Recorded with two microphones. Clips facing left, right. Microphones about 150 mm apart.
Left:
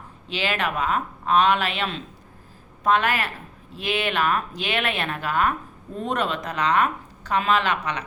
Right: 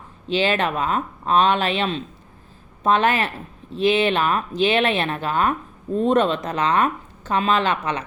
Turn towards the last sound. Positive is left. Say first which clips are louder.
# right 2 dB
turn(degrees=-30)  # may be behind; listen again after turning